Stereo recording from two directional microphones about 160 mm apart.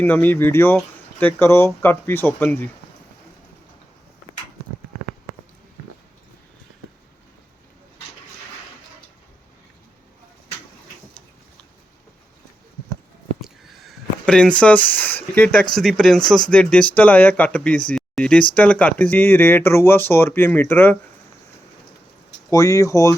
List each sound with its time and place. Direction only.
0.0 s speech: 10° left (ahead or behind)
13.4 s a sound: centre (ahead or behind)
15.7 s speech: centre (ahead or behind)
22.4 s speech: 20° left (ahead or behind)